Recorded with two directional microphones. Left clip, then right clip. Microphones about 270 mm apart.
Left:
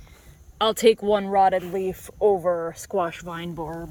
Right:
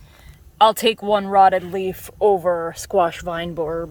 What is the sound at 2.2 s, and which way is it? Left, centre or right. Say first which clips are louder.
Speech: right 4 dB; right.